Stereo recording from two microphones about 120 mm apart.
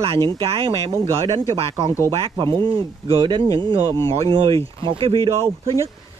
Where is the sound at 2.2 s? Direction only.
40° right (ahead or behind).